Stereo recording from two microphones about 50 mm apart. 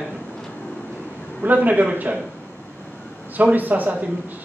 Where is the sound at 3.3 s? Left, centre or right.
Right.